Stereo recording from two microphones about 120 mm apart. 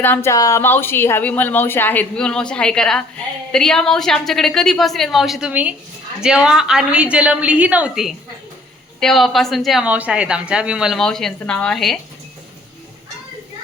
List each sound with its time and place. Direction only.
0.0 s a woman's voice: 20° left (ahead or behind); by 9.8 s centre (ahead or behind)
9.8 s a woman's voice: 10° right (ahead or behind)